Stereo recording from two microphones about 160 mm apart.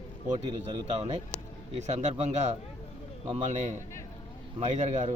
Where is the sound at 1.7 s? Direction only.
45° right (ahead or behind).